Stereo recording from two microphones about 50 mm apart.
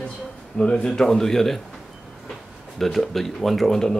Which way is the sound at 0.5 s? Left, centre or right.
Centre.